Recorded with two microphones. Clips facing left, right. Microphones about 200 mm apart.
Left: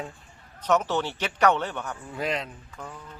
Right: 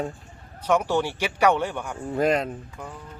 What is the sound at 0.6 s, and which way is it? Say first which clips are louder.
Speech: right 2 dB; 10° right (ahead or behind).